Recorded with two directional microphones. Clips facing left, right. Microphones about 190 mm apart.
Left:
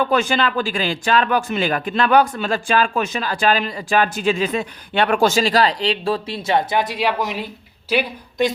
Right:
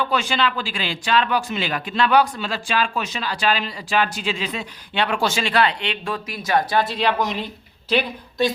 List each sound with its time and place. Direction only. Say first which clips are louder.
0.0 s a woman's voice: left 4 dB; 50° left (ahead or behind); by 8.4 s 10° left (ahead or behind)